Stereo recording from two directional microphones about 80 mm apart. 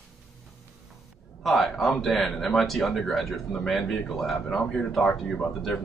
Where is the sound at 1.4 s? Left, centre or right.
Centre.